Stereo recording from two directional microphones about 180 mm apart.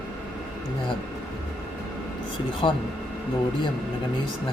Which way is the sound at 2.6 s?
30° left (ahead or behind).